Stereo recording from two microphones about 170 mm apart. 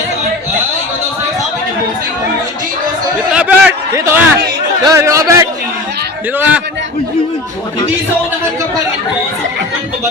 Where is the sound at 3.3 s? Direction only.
5° right (ahead or behind).